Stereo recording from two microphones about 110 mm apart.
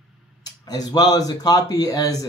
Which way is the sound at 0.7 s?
35° left (ahead or behind).